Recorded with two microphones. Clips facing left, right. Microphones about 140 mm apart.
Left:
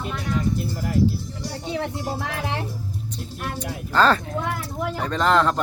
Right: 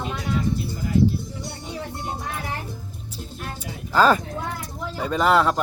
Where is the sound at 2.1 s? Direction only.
90° left.